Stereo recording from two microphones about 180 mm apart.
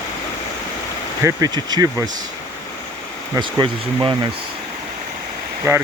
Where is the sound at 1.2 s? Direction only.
20° right (ahead or behind).